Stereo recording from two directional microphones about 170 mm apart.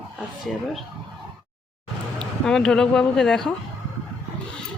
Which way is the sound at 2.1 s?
5° left (ahead or behind).